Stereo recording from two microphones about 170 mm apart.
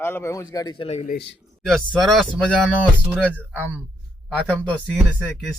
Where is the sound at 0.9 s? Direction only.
40° left (ahead or behind).